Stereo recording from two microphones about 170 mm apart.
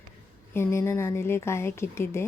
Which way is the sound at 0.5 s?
15° left (ahead or behind).